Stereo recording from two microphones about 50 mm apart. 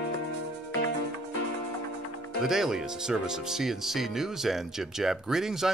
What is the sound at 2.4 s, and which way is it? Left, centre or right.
Speech, centre.